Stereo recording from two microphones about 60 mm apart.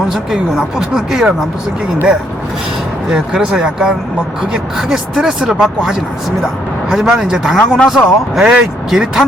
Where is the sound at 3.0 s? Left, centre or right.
Centre.